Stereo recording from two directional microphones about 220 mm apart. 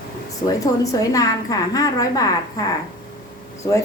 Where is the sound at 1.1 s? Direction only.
15° left (ahead or behind).